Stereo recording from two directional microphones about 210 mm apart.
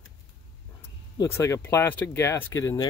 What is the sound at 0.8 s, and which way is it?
Speech, 10° left (ahead or behind).